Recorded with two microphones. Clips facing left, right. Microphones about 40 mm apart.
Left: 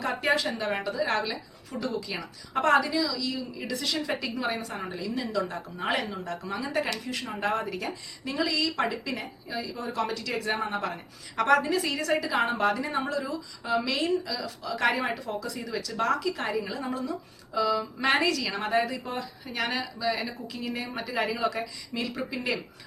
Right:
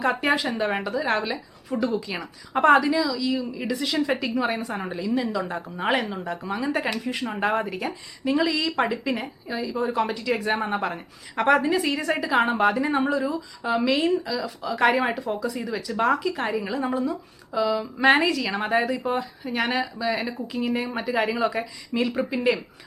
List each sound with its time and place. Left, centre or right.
0.0 s a woman's voice: right